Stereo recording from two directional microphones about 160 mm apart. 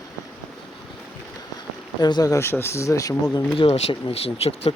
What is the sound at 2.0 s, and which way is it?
Speech, 25° left (ahead or behind).